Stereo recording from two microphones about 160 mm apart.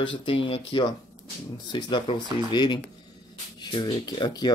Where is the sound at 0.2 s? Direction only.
35° left (ahead or behind).